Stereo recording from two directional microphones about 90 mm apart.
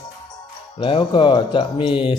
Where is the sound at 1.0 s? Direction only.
60° left (ahead or behind).